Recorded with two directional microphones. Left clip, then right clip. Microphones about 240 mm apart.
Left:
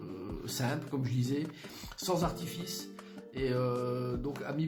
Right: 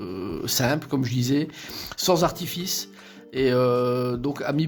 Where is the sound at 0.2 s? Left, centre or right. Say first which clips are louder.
Right 13 dB; right.